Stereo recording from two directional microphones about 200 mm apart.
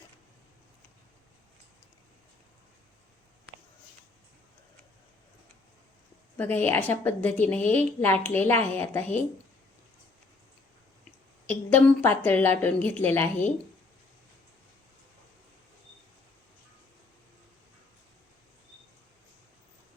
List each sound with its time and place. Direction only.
6.3 s a woman's voice: 10° left (ahead or behind)
11.4 s a woman's voice: 10° left (ahead or behind)